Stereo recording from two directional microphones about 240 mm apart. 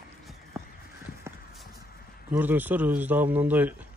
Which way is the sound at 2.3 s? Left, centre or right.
Centre.